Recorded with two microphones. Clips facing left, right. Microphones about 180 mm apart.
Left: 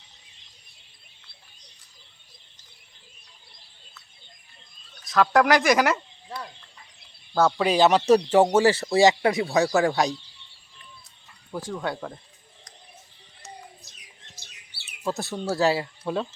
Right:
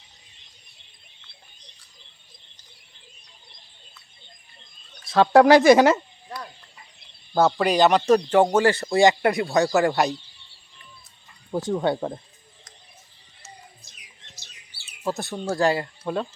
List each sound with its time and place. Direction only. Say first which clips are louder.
5.0 s speech: right 5 dB; 30° right (ahead or behind)
7.3 s speech: right 1 dB; 5° right (ahead or behind)
11.5 s speech: right 7 dB; 25° right (ahead or behind)
15.0 s speech: right 1 dB; centre (ahead or behind)